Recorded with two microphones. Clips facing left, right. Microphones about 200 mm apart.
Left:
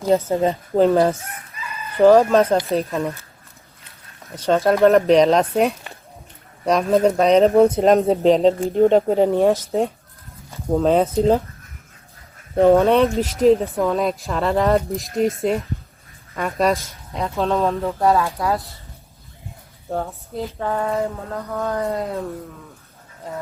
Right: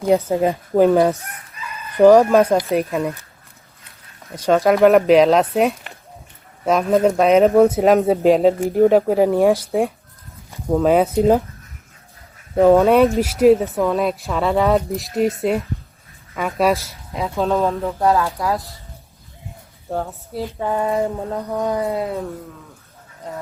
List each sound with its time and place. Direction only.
0.0 s speech: 15° right (ahead or behind)
2.0 s speech: 15° right (ahead or behind)
4.4 s speech: 15° right (ahead or behind)
12.5 s speech: 5° right (ahead or behind)
19.9 s speech: 5° right (ahead or behind)